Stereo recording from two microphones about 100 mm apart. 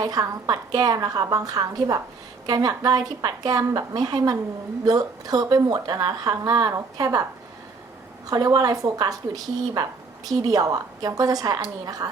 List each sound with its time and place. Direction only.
0.0 s a woman's voice: 40° right (ahead or behind)
8.5 s a woman's voice: 40° right (ahead or behind)